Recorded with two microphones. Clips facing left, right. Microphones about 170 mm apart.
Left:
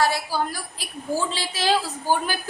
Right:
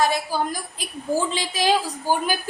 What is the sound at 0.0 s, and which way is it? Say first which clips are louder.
A woman's voice: right 1 dB; 20° right (ahead or behind).